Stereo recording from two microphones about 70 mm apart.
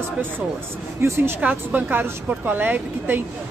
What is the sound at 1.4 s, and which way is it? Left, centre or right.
Speech, centre.